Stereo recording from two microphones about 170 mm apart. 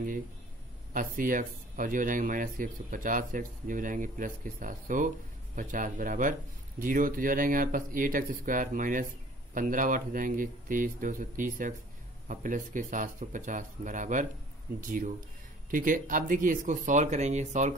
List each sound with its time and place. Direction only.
0.9 s speech: 55° right (ahead or behind)